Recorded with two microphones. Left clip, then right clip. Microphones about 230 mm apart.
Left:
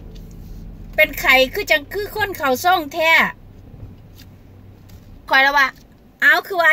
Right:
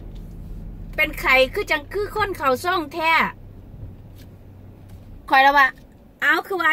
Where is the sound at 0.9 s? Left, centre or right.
Centre.